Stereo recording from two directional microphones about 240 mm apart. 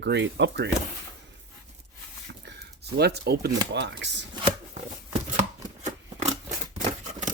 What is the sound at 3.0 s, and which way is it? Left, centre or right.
Speech, right.